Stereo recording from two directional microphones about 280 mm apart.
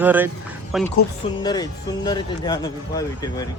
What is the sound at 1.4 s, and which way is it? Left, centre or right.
Speech, centre.